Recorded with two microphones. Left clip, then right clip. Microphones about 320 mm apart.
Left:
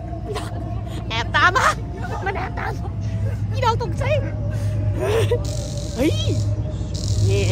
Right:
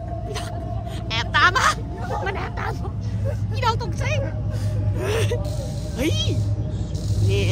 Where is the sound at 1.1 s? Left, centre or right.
Centre.